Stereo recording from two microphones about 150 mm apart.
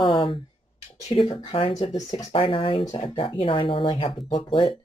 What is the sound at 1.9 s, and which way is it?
Speech, 25° left (ahead or behind).